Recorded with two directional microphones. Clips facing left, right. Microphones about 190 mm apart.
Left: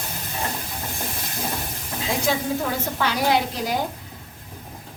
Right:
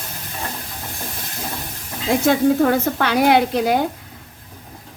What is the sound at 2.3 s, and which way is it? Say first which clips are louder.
A woman's voice: right 10 dB; 60° right (ahead or behind).